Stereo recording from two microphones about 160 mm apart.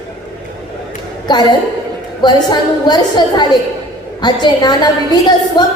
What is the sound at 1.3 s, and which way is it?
A woman's voice, 25° left (ahead or behind).